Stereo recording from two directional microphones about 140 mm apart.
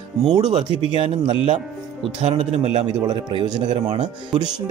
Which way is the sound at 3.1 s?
35° right (ahead or behind).